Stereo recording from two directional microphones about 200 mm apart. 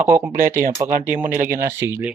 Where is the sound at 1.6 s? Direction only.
10° right (ahead or behind).